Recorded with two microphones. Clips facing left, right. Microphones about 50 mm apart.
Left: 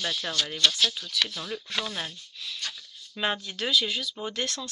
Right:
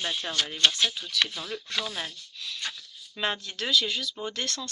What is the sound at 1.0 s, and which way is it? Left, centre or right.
Speech, centre.